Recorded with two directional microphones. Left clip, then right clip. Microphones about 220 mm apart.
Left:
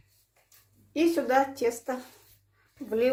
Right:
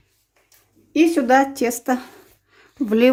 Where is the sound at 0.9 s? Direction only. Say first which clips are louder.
Right 9 dB; 45° right (ahead or behind).